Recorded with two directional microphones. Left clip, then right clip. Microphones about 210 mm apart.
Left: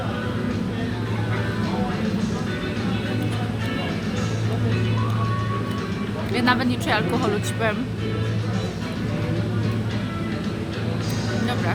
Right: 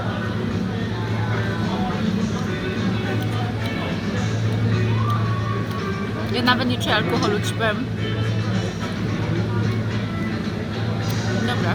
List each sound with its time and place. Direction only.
6.3 s speech: 20° left (ahead or behind)